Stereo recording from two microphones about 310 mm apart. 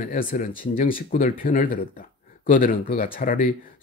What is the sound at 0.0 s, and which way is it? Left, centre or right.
Speech, left.